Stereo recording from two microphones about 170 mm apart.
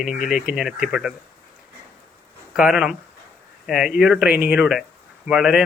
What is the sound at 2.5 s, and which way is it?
Speech, 5° right (ahead or behind).